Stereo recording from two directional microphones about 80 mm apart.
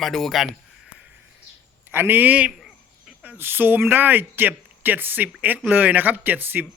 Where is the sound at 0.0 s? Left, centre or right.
Centre.